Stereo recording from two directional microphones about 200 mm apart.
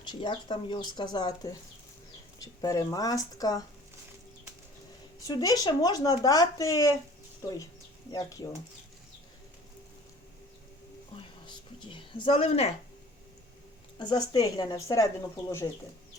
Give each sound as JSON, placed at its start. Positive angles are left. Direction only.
{"t": 0.1, "sound": "speech", "side_deg": 25}
{"t": 5.2, "sound": "speech", "side_deg": 20}
{"t": 8.1, "sound": "speech", "side_deg": 15}
{"t": 11.2, "sound": "a sound", "side_deg": 20}
{"t": 14.0, "sound": "speech", "side_deg": 20}